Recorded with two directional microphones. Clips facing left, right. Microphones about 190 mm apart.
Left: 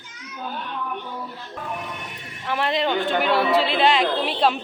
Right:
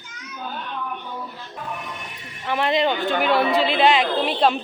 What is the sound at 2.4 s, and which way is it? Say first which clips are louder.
A woman's voice: right 2 dB; centre (ahead or behind).